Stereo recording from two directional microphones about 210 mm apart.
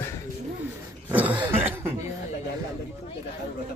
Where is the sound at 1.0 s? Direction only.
5° right (ahead or behind).